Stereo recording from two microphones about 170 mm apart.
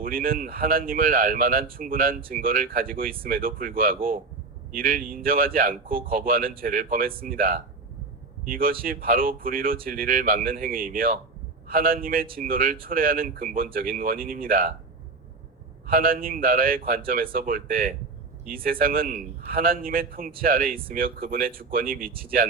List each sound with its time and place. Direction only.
0.0 s speech: 55° right (ahead or behind)
15.9 s speech: 55° right (ahead or behind)